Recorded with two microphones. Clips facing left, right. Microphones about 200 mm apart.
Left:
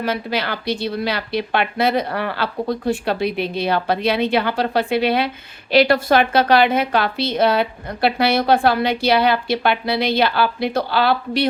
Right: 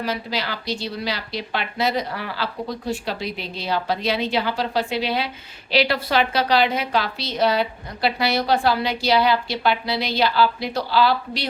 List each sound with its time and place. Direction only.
0.0 s a woman's voice: 60° left (ahead or behind)